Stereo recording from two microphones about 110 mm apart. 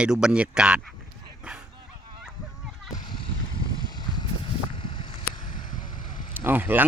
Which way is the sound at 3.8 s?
40° left (ahead or behind).